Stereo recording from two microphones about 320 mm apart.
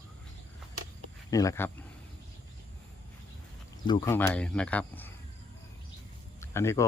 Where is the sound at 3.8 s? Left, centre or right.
Centre.